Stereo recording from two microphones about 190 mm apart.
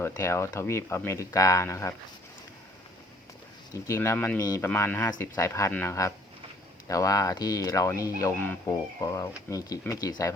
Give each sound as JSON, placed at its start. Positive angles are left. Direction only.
{"t": 0.0, "sound": "speech", "side_deg": 15}
{"t": 3.8, "sound": "speech", "side_deg": 15}